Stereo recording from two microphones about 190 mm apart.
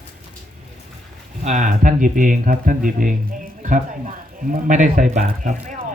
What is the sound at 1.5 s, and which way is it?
Speech, 40° right (ahead or behind).